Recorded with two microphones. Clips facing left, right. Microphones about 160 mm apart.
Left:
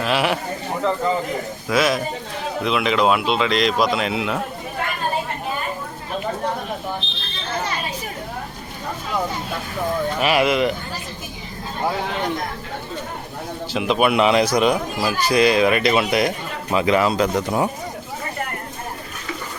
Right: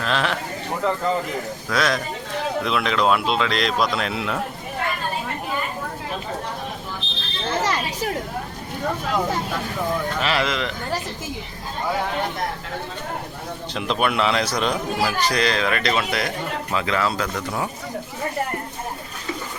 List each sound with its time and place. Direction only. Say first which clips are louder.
0.0 s speech: left 3 dB; 10° left (ahead or behind)
1.7 s speech: left 4 dB; 5° left (ahead or behind)
7.0 s a sound: even; 40° right (ahead or behind)
7.6 s a sound: right 3 dB; 80° right
10.2 s speech: left 5 dB; 15° left (ahead or behind)
13.7 s speech: left 5 dB; 5° left (ahead or behind)